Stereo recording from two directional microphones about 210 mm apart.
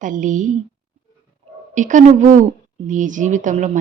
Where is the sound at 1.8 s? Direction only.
35° right (ahead or behind).